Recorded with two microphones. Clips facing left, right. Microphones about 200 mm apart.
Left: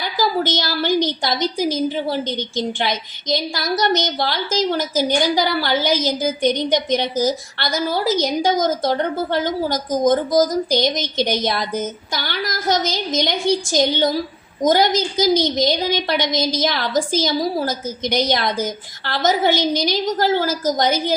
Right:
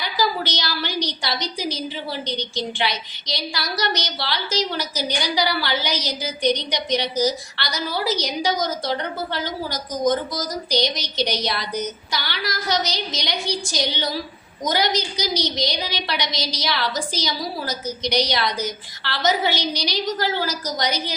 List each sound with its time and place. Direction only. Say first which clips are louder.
0.0 s a woman's voice: left 4 dB; 50° left (ahead or behind)